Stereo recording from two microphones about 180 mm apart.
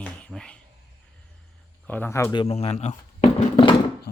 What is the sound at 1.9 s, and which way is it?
Speech, 10° left (ahead or behind).